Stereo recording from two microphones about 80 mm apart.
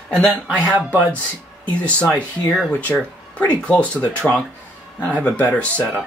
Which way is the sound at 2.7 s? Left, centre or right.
Left.